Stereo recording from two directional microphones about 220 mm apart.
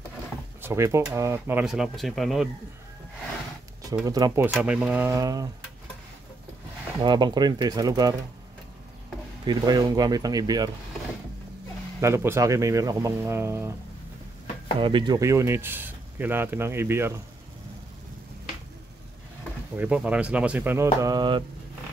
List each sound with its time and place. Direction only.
0.6 s speech: 10° right (ahead or behind)
3.9 s speech: 15° right (ahead or behind)
4.5 s speech: 5° right (ahead or behind)
7.0 s speech: 20° right (ahead or behind)
9.4 s speech: 20° right (ahead or behind)
12.0 s speech: 10° right (ahead or behind)
14.8 s speech: 20° right (ahead or behind)
19.8 s speech: 5° right (ahead or behind)